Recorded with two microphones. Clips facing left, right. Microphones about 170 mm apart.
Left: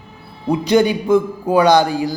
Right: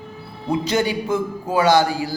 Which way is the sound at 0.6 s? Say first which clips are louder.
Left 9 dB; 15° left (ahead or behind).